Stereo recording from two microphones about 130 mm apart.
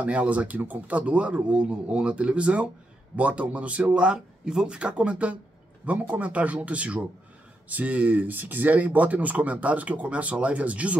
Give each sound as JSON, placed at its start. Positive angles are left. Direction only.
{"t": 0.0, "sound": "speech", "side_deg": -10}